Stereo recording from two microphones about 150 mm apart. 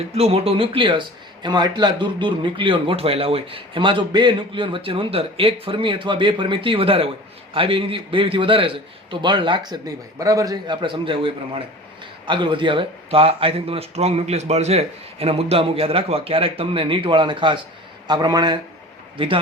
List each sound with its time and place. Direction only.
0.1 s a man's voice: 40° right (ahead or behind)